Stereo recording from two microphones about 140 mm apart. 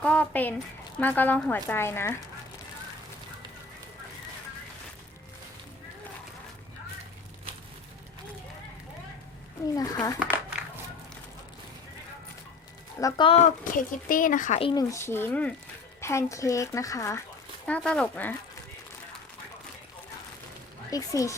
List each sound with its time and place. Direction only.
0.0 s speech: 10° left (ahead or behind)
9.7 s speech: 25° left (ahead or behind)
13.0 s speech: 25° left (ahead or behind)
13.2 s speech: 45° left (ahead or behind)
13.7 s speech: 75° left (ahead or behind)
14.6 s speech: 35° left (ahead or behind)
14.8 s speech: 20° left (ahead or behind)
16.0 s speech: 20° left (ahead or behind)
17.7 s speech: 10° left (ahead or behind)
20.9 s speech: 25° left (ahead or behind)